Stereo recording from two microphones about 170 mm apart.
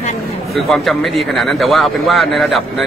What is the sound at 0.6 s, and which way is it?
A man's voice, centre (ahead or behind).